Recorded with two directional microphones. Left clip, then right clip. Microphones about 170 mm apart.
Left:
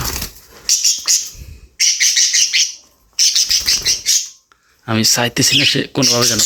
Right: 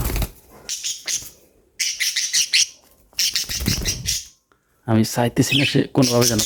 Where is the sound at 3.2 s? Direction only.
50° right (ahead or behind).